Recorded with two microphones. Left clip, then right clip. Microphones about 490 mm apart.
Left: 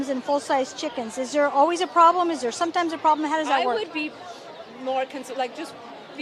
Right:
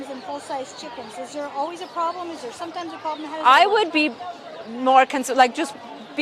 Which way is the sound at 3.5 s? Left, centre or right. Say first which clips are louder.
Right 13 dB; right.